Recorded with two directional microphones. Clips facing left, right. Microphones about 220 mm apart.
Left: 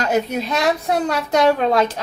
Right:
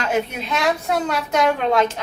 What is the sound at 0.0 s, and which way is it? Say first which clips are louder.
A woman's voice: left 3 dB; 40° left (ahead or behind).